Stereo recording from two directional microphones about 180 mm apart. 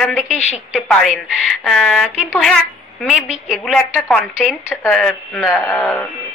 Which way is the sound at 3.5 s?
5° left (ahead or behind).